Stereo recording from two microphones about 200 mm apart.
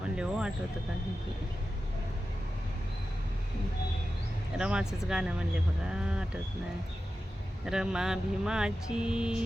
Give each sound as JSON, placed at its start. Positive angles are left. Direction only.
{"t": 0.2, "sound": "speech", "side_deg": -5}
{"t": 4.5, "sound": "speech", "side_deg": -5}
{"t": 7.6, "sound": "speech", "side_deg": -5}